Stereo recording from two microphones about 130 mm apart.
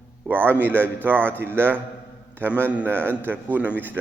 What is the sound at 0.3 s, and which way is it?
A man's voice, 15° right (ahead or behind).